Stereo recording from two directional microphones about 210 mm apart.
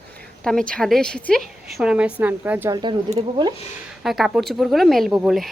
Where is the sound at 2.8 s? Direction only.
25° right (ahead or behind).